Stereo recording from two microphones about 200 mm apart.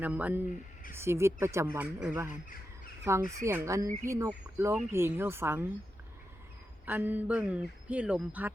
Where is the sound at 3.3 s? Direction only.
15° right (ahead or behind).